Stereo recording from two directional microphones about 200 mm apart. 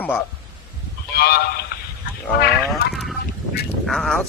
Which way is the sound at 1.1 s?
50° left (ahead or behind).